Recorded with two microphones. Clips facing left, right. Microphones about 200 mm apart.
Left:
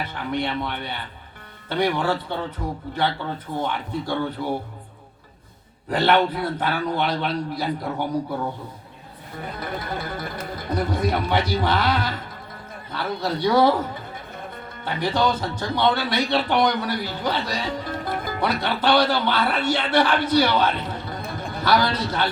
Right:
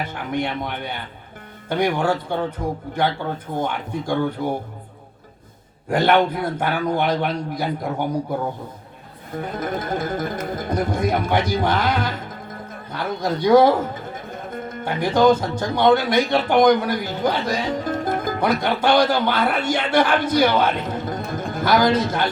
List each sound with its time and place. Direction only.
0.0 s speech: 45° right (ahead or behind)
5.9 s speech: 45° right (ahead or behind)
9.5 s a man's voice: 45° right (ahead or behind)